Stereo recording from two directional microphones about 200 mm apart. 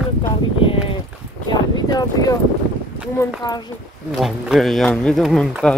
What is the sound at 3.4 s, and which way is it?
Speech, 20° left (ahead or behind).